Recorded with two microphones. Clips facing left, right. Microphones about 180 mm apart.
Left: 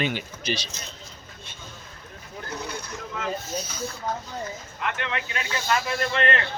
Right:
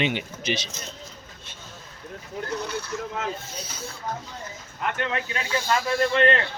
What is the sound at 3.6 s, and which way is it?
Snake, 30° right (ahead or behind).